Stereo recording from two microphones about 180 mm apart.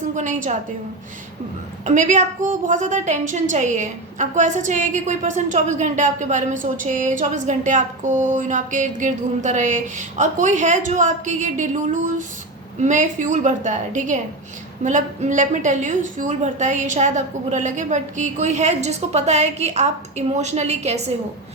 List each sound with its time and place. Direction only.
0.2 s a woman's voice: 45° right (ahead or behind)
1.8 s a woman's voice: 45° right (ahead or behind)